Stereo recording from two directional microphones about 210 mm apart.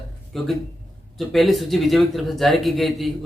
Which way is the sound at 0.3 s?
Centre (ahead or behind).